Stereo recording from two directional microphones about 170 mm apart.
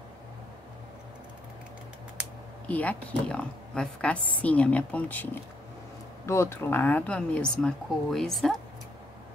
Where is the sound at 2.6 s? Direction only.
10° left (ahead or behind).